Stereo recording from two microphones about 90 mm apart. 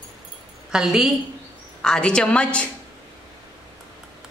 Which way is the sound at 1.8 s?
10° left (ahead or behind).